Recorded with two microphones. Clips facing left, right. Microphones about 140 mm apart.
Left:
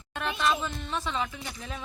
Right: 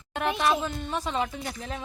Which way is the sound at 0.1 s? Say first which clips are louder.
Right 3 dB; 35° right (ahead or behind).